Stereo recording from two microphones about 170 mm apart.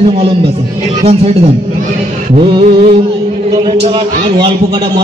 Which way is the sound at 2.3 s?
25° right (ahead or behind).